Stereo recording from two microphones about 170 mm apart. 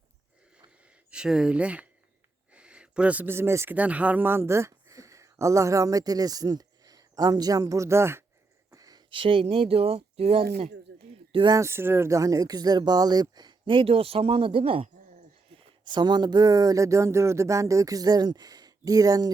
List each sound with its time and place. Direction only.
1.1 s speech: 5° right (ahead or behind); by 10.4 s 35° right (ahead or behind)
10.9 s a sound: 90° right
11.3 s speech: 30° right (ahead or behind)